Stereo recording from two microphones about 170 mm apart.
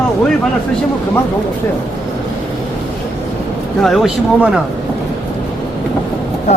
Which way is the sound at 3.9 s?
Centre (ahead or behind).